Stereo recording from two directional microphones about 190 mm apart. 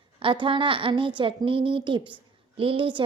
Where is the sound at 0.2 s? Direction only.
25° right (ahead or behind).